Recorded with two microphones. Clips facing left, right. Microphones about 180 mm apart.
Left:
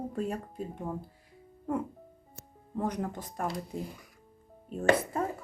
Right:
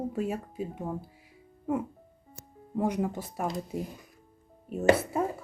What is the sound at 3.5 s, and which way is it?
Speech, 20° right (ahead or behind).